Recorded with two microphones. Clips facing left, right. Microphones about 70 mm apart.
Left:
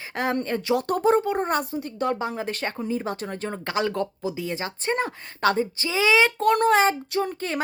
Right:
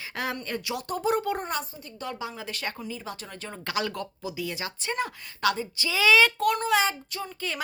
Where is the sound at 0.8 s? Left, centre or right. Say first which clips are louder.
Left 7 dB; left.